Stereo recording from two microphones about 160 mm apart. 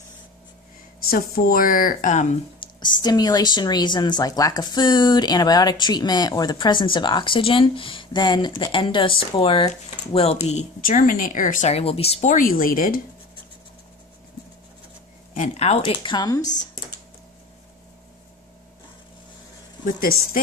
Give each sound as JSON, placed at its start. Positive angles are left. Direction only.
{"t": 1.1, "sound": "speech", "side_deg": 65}
{"t": 2.6, "sound": "a woman's voice", "side_deg": 30}
{"t": 11.7, "sound": "speech", "side_deg": 40}
{"t": 15.3, "sound": "speech", "side_deg": 50}
{"t": 19.8, "sound": "speech", "side_deg": 60}